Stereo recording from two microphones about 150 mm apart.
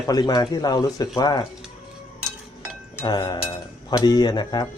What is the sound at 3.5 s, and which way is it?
Cutlery, 25° left (ahead or behind).